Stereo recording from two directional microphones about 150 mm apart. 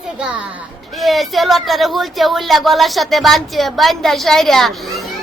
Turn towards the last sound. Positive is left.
turn(degrees=0)  # may be behind; listen again after turning